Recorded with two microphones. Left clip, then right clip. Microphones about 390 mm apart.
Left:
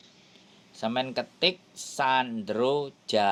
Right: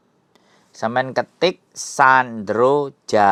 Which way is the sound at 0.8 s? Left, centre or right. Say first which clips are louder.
Right 9 dB; right.